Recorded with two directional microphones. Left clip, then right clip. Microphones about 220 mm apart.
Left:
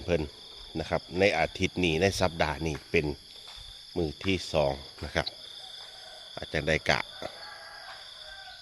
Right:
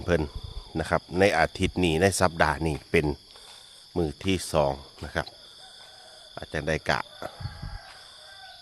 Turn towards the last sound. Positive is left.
turn(degrees=-10)  # may be behind; listen again after turning